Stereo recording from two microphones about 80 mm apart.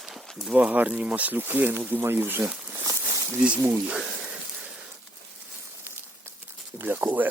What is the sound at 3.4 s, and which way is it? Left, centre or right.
Speech, centre.